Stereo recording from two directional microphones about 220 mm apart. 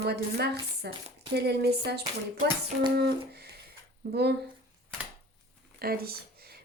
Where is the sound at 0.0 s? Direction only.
45° right (ahead or behind).